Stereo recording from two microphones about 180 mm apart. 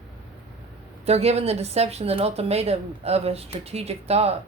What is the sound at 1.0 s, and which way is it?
Speech, 35° right (ahead or behind).